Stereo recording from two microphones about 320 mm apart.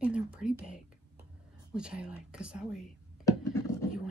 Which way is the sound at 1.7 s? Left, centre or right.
Centre.